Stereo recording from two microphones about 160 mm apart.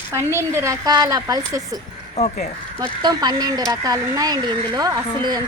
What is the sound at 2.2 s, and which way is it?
Speech, 40° left (ahead or behind).